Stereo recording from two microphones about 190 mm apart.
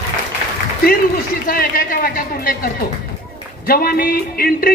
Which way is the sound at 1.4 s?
50° left (ahead or behind).